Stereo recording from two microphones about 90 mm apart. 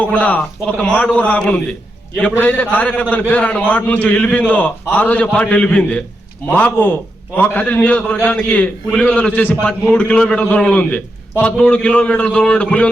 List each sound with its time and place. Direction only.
0.1 s a man's voice: 15° left (ahead or behind)